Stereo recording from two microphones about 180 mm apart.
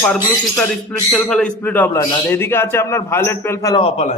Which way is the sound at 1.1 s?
5° left (ahead or behind).